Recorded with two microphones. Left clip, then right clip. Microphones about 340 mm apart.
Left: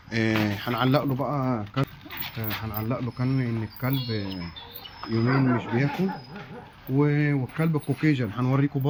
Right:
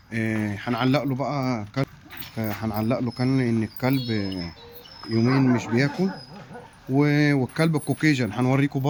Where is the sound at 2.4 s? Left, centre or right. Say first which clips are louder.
Right 7 dB; centre.